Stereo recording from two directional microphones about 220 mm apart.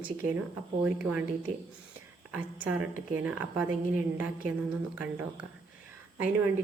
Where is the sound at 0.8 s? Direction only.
5° right (ahead or behind).